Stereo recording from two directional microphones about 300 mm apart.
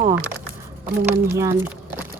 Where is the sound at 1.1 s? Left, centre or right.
Centre.